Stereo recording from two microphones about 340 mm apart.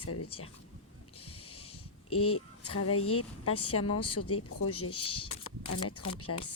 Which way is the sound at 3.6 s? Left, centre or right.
Left.